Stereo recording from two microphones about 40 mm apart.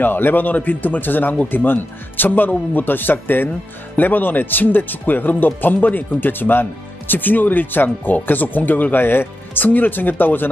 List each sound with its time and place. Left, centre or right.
0.0 s speech: left
9.8 s speech: left